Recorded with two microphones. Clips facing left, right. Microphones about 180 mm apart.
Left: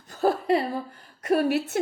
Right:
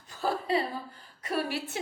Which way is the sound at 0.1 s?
45° left (ahead or behind).